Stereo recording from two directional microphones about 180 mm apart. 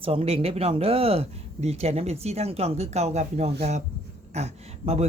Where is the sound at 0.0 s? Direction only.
30° right (ahead or behind).